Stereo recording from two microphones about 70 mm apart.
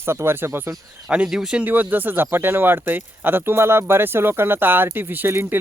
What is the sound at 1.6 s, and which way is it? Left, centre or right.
Speech, right.